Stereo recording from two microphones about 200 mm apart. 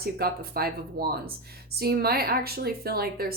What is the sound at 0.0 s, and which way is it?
Speech, 50° right (ahead or behind).